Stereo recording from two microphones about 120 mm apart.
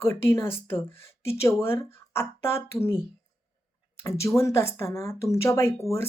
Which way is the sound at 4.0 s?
25° left (ahead or behind).